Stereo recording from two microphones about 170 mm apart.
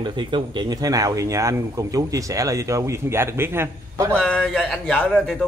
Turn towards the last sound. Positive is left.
turn(degrees=5)  # may be behind; listen again after turning